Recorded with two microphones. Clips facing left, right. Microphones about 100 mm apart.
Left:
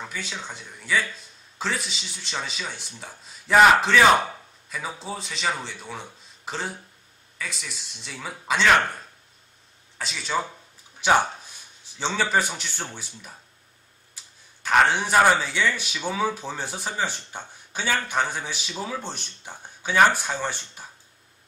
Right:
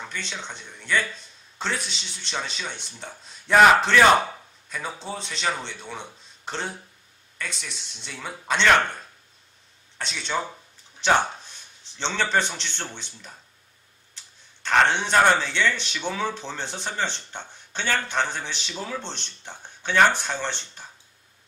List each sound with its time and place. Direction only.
0.0 s a man's voice: 5° left (ahead or behind)
9.9 s a man's voice: 5° left (ahead or behind)